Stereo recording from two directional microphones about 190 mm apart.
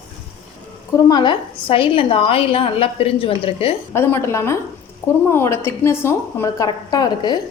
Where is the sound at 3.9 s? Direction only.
15° left (ahead or behind).